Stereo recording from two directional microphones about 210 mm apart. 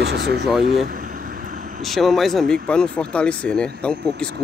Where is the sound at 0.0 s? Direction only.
50° right (ahead or behind).